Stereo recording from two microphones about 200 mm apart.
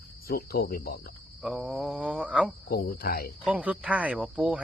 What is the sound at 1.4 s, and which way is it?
Cricket, 5° right (ahead or behind).